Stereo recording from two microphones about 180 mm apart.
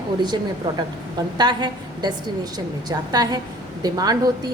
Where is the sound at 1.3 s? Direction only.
25° right (ahead or behind).